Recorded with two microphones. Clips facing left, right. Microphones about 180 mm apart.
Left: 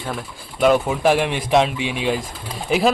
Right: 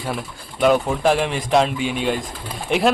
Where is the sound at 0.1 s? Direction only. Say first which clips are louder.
Right 1 dB; centre (ahead or behind).